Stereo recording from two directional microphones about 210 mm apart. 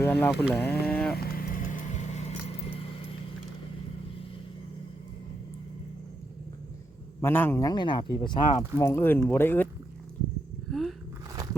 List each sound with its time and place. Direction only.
0.0 s speech: 10° left (ahead or behind)
0.6 s boat: 10° left (ahead or behind)
1.1 s vehicle: 45° left (ahead or behind); by 3.1 s 30° left (ahead or behind)
7.2 s speech: 10° left (ahead or behind)
10.7 s a sound: centre (ahead or behind)